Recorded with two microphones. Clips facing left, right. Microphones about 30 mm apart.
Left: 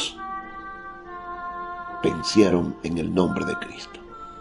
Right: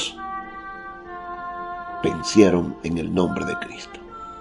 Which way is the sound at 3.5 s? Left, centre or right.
Right.